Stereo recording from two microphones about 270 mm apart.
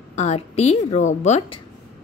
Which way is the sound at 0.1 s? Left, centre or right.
Left.